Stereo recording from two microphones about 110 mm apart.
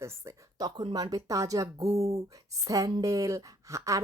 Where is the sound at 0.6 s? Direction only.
40° right (ahead or behind).